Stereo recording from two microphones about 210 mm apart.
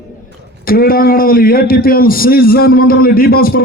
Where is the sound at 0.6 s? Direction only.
45° left (ahead or behind).